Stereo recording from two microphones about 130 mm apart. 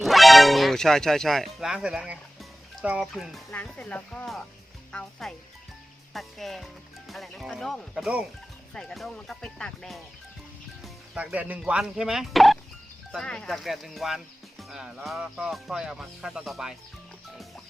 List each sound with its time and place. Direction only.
0.0 s speech: centre (ahead or behind)